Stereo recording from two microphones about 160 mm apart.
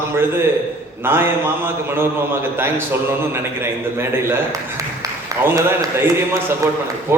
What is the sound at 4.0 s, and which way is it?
Speech, 15° right (ahead or behind).